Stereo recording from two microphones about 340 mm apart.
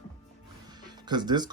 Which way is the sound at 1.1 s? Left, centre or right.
Centre.